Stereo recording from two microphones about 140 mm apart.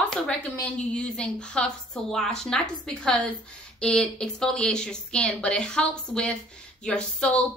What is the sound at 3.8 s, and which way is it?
A woman's voice, 5° left (ahead or behind).